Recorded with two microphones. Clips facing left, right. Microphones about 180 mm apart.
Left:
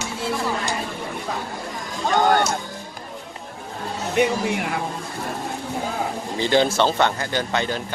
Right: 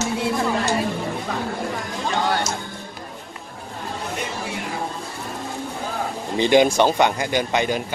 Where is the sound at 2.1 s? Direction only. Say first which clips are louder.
Left 5 dB; 50° left (ahead or behind).